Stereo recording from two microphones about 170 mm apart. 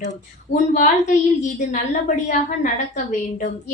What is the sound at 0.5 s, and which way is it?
A woman's voice, 50° left (ahead or behind).